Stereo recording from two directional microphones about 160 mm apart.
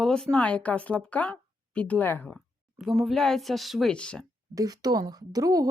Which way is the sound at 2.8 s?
Centre (ahead or behind).